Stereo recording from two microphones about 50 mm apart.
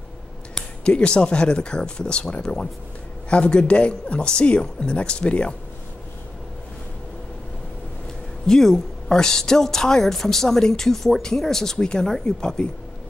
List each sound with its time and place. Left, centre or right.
0.8 s a woman's voice: left
8.5 s a woman's voice: centre